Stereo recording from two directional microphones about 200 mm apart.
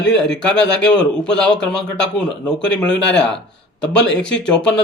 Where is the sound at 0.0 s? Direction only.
5° left (ahead or behind).